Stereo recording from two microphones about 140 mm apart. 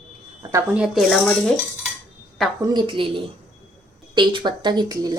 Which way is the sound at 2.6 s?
35° right (ahead or behind).